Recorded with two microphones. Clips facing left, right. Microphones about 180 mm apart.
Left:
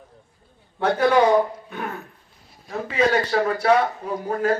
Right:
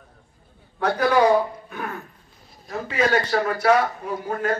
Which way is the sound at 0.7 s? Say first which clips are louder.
Left 1 dB; 25° left (ahead or behind).